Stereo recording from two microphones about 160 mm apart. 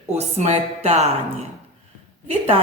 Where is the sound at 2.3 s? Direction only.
40° right (ahead or behind).